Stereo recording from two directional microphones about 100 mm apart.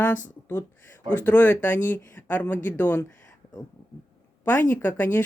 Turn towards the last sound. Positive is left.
turn(degrees=20)  # may be behind; listen again after turning